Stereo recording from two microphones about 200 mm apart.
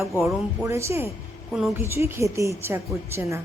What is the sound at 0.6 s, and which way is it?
Speech, 15° right (ahead or behind).